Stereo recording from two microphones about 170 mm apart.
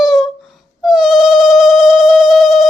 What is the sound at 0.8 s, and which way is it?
Cat, 5° right (ahead or behind).